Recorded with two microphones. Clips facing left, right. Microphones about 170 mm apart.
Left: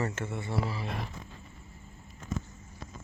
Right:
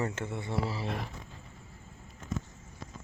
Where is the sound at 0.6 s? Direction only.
35° right (ahead or behind).